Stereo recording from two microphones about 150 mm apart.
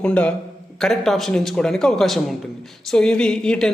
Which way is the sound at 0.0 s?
10° left (ahead or behind).